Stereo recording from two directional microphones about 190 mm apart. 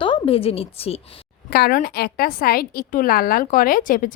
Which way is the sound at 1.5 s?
55° left (ahead or behind).